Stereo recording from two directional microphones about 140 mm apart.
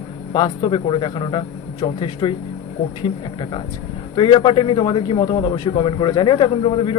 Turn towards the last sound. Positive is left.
turn(degrees=40)  # may be behind; listen again after turning